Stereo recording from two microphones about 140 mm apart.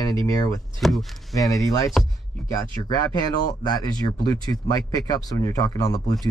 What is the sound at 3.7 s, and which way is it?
Speech, 30° left (ahead or behind).